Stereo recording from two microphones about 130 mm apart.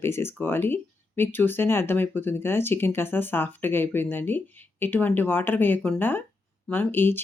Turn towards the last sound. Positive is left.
turn(degrees=15)  # may be behind; listen again after turning